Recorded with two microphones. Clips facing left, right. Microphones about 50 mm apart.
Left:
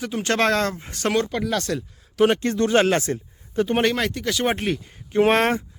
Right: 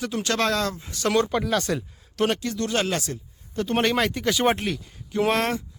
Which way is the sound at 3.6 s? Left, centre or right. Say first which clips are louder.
Left 6 dB; centre.